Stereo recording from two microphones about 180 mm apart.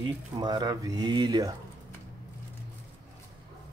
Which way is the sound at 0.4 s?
25° right (ahead or behind).